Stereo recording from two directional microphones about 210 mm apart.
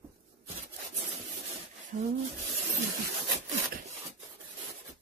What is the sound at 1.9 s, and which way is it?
Speech, 40° right (ahead or behind).